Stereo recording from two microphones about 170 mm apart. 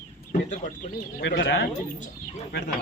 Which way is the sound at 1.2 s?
90° left.